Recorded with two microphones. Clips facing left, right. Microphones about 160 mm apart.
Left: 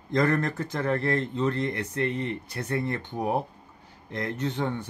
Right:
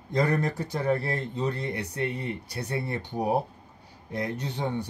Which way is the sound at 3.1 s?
35° right (ahead or behind).